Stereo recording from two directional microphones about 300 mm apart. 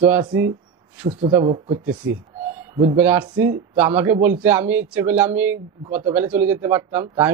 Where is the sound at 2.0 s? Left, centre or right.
Right.